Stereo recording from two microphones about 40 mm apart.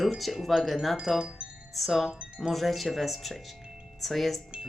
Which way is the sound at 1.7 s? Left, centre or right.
Centre.